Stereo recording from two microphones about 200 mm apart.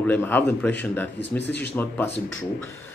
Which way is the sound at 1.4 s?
60° left (ahead or behind).